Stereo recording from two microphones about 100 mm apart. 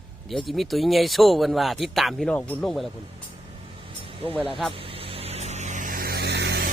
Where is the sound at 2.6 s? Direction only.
Centre (ahead or behind).